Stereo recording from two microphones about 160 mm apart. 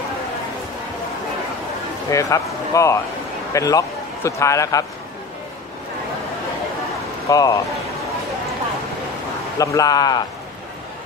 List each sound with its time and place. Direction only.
2.0 s speech: 20° left (ahead or behind)
7.2 s speech: 20° left (ahead or behind)
9.6 s speech: 20° left (ahead or behind)